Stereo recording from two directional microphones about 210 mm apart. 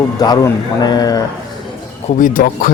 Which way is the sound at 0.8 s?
20° left (ahead or behind).